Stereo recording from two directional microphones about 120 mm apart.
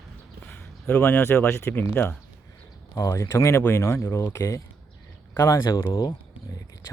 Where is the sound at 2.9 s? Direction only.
30° left (ahead or behind).